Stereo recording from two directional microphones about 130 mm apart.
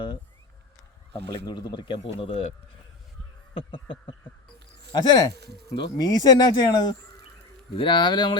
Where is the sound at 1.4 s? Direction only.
35° left (ahead or behind).